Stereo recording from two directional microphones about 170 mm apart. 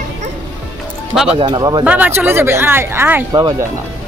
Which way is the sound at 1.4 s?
25° right (ahead or behind).